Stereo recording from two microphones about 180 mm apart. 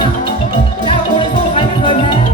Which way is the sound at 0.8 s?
30° left (ahead or behind).